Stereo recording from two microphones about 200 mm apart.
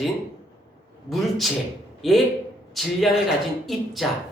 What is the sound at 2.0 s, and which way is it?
Speech, centre (ahead or behind).